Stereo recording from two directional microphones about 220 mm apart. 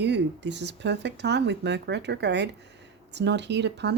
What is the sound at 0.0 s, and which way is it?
Speech, 50° right (ahead or behind).